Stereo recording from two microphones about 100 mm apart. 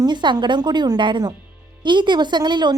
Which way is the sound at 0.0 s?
50° right (ahead or behind).